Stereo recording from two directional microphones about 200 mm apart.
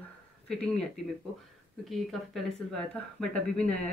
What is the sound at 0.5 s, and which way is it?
Speech, 5° left (ahead or behind).